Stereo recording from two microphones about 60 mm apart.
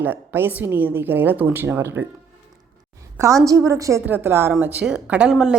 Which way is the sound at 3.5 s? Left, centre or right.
Right.